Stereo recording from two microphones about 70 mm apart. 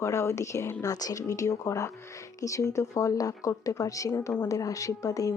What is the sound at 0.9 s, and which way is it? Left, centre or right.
Speech, left.